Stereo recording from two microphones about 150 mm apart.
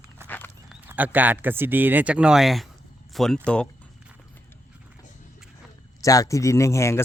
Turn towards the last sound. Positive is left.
turn(degrees=20)  # may be behind; listen again after turning